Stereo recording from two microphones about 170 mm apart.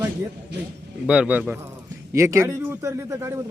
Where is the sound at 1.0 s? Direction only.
5° right (ahead or behind).